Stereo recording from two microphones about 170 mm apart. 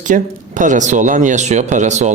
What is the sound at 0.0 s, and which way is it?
A man's voice, 45° right (ahead or behind).